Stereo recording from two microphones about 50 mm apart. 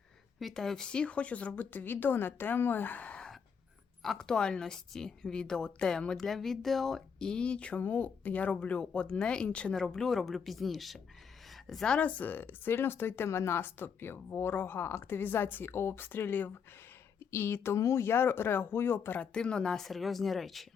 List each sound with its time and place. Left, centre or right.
0.3 s a woman's voice: centre; by 3.2 s left
4.2 s a woman's voice: centre
6.1 s a woman's voice: centre; by 7.8 s left
7.8 s a woman's voice: left
9.7 s speech: centre
11.5 s a sound: centre
11.9 s speech: left
17.2 s speech: left
19.2 s speech: centre